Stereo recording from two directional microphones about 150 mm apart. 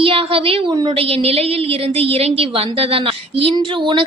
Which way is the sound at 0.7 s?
25° right (ahead or behind).